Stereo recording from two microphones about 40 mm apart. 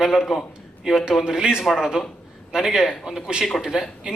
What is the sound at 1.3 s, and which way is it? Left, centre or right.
A man's voice, centre.